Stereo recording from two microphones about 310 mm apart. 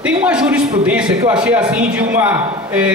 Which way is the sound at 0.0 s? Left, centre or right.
Centre.